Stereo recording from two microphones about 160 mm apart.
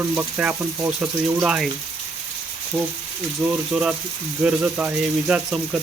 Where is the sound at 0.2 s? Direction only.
10° right (ahead or behind).